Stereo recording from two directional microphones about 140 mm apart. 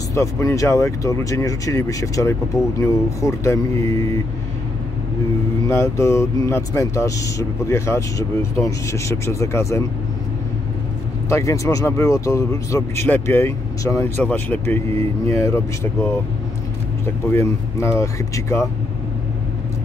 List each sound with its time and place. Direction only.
0.1 s speech: 20° left (ahead or behind)
5.7 s speech: 20° left (ahead or behind)
11.2 s speech: 20° left (ahead or behind)